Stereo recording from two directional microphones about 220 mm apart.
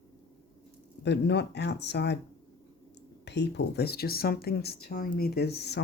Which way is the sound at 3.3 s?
50° left (ahead or behind).